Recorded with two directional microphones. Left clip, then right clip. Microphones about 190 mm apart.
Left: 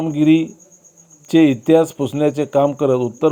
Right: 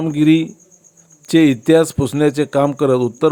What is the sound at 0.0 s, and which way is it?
Speech, 35° right (ahead or behind).